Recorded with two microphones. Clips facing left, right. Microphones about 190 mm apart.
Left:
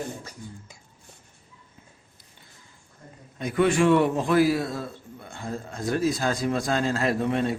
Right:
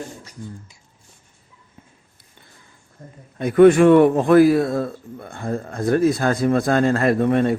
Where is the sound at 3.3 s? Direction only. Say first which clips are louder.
Right 10 dB; 55° right (ahead or behind).